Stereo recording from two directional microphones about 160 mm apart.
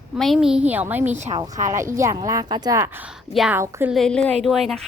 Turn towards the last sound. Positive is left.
turn(degrees=0)  # may be behind; listen again after turning